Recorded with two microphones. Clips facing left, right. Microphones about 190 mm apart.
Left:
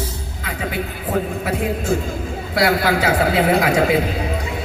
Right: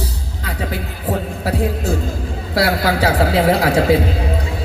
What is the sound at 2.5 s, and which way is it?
A man's voice, 35° right (ahead or behind).